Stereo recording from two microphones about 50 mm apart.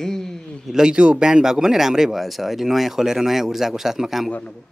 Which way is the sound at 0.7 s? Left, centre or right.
Centre.